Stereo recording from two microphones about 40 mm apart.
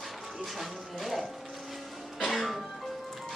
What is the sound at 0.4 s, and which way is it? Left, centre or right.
Speech, centre.